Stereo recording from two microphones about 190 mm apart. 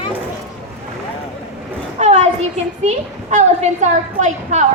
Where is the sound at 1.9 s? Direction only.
35° right (ahead or behind).